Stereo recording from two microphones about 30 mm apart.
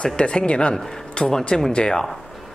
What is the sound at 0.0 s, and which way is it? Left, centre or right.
Speech, left.